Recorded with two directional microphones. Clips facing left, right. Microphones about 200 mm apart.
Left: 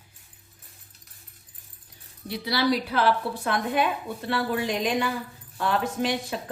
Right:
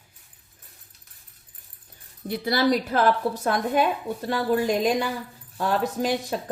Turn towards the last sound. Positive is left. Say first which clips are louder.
# right 2 dB
turn(degrees=-40)  # may be behind; listen again after turning